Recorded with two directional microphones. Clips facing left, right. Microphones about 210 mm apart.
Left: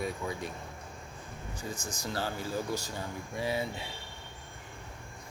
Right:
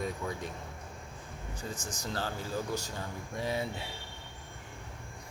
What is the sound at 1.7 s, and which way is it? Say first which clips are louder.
Speech: left 2 dB; 10° left (ahead or behind).